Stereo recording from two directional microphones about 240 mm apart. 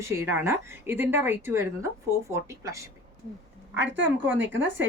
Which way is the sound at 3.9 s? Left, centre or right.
Right.